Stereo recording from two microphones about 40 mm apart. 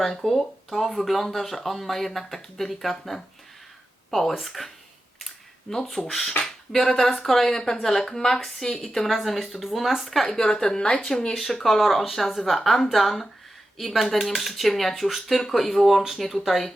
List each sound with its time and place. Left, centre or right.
0.0 s speech: centre
5.7 s speech: centre
9.0 s speech: centre
10.2 s speech: centre